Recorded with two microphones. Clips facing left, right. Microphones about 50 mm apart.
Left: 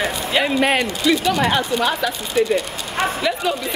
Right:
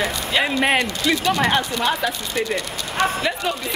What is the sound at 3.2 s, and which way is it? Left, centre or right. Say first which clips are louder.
Speech: left 2 dB; centre.